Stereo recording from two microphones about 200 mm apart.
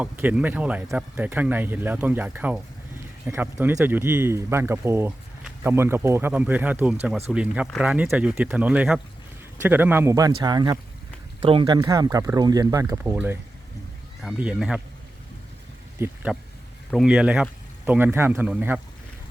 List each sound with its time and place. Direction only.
0.0 s speech: 5° right (ahead or behind)
16.0 s speech: 10° right (ahead or behind)